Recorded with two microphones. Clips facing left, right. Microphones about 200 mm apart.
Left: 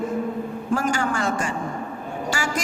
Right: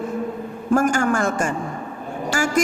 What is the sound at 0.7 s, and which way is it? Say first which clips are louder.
Speech: right 5 dB; 50° right (ahead or behind).